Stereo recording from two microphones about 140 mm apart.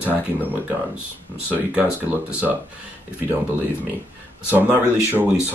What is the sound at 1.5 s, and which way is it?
Speech, 10° right (ahead or behind).